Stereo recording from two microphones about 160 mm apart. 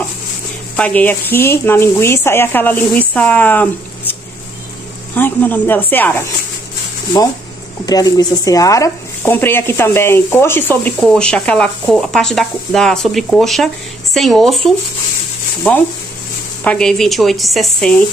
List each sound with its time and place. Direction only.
0.7 s speech: 10° left (ahead or behind)
5.1 s speech: 10° left (ahead or behind)
7.8 s speech: 25° left (ahead or behind); by 14.7 s centre (ahead or behind)
16.6 s speech: 5° left (ahead or behind)